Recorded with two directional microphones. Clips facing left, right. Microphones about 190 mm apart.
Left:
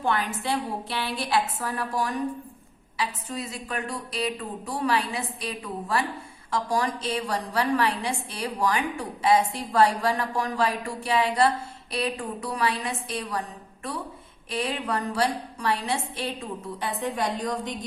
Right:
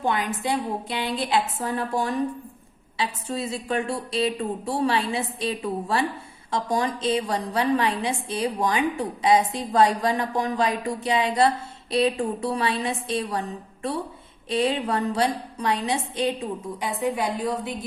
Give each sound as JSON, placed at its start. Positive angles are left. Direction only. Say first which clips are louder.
{"t": 0.0, "sound": "a woman's voice", "louder": "right 2 dB", "side_deg": -20}
{"t": 14.5, "sound": "a woman's voice", "louder": "right 5 dB", "side_deg": -25}